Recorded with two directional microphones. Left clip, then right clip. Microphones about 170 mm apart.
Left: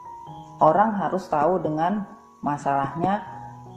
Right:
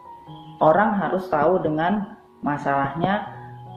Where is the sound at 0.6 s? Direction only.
35° left (ahead or behind).